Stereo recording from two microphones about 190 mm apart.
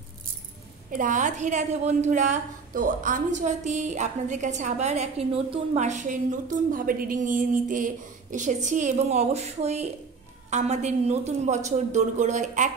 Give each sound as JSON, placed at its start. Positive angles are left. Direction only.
{"t": 0.9, "sound": "a woman's voice", "side_deg": -40}